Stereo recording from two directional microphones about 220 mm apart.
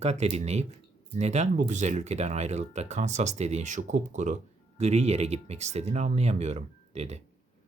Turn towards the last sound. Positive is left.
turn(degrees=-30)  # may be behind; listen again after turning